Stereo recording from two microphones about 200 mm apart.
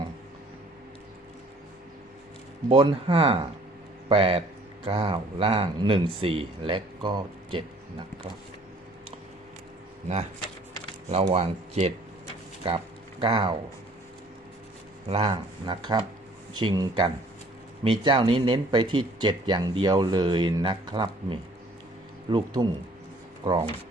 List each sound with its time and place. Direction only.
2.6 s speech: 25° right (ahead or behind)
11.1 s speech: 30° right (ahead or behind)
12.6 s a sound: 25° right (ahead or behind)
15.0 s speech: 30° right (ahead or behind)